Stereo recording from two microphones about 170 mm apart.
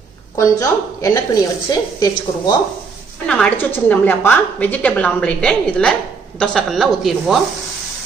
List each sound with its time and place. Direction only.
0.4 s a woman's voice: 20° left (ahead or behind)
3.3 s a woman's voice: 5° left (ahead or behind)